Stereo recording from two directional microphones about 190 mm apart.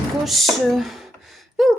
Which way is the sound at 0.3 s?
Centre (ahead or behind).